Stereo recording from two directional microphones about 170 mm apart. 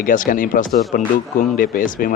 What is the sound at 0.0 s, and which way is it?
Speech, 55° left (ahead or behind).